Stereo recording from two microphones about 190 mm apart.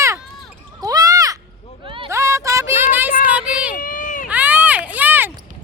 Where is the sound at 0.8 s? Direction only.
20° right (ahead or behind).